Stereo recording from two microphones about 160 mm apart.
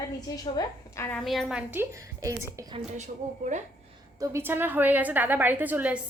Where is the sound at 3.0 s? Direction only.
50° right (ahead or behind).